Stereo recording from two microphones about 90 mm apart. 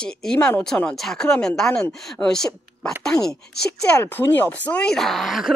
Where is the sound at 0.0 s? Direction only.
10° left (ahead or behind).